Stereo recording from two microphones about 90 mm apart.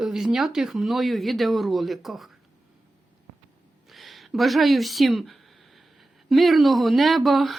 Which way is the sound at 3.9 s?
Centre (ahead or behind).